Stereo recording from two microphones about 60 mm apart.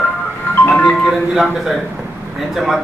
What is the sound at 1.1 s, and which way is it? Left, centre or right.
Speech, centre.